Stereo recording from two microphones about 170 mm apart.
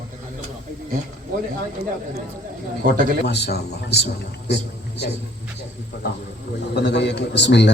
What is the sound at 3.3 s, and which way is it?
Speech, 85° left.